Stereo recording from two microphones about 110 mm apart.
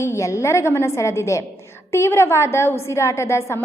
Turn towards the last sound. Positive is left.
turn(degrees=25)  # may be behind; listen again after turning